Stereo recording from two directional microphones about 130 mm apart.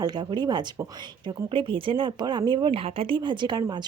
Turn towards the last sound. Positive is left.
turn(degrees=-35)  # may be behind; listen again after turning